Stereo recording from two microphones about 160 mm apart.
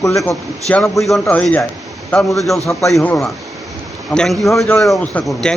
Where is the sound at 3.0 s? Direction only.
10° left (ahead or behind).